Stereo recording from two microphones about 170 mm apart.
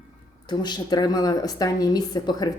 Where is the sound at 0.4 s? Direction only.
25° left (ahead or behind).